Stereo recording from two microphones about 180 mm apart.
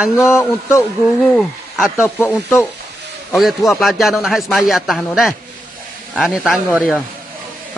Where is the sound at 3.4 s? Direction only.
Centre (ahead or behind).